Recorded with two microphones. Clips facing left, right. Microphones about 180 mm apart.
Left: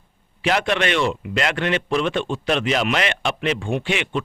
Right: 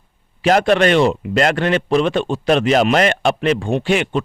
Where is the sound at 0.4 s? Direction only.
40° right (ahead or behind).